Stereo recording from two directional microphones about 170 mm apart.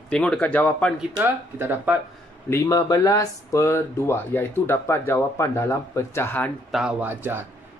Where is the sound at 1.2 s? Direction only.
10° right (ahead or behind).